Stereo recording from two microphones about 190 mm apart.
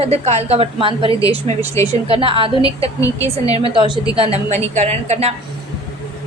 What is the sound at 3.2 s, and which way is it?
Speech, 20° left (ahead or behind).